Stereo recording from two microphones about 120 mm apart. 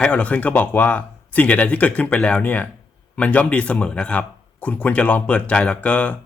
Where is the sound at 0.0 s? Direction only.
10° left (ahead or behind).